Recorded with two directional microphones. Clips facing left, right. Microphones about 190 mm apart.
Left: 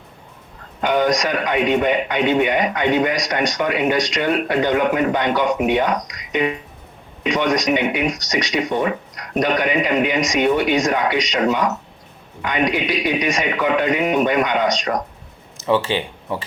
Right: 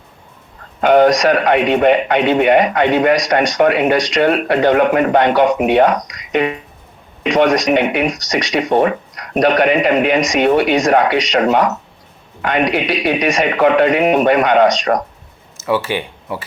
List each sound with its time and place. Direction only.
0.8 s speech: 60° right (ahead or behind)
15.9 s speech: 15° right (ahead or behind)